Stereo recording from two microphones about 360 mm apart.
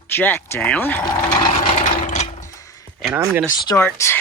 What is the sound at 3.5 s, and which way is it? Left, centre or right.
Speech, centre.